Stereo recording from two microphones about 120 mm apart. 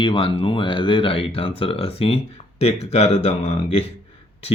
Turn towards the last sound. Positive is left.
turn(degrees=55)  # may be behind; listen again after turning